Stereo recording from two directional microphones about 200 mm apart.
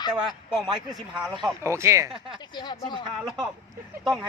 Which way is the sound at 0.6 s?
20° right (ahead or behind).